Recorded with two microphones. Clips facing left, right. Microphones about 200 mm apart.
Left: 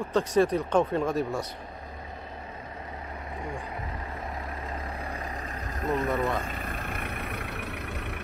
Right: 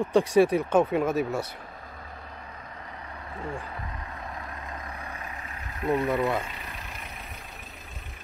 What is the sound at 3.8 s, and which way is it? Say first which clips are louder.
Vehicle: left 2 dB; 30° left (ahead or behind).